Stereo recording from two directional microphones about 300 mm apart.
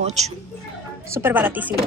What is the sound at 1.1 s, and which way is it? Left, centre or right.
Speech, centre.